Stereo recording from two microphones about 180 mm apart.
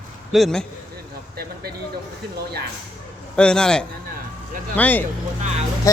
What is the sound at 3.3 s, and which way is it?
Speech, 5° left (ahead or behind).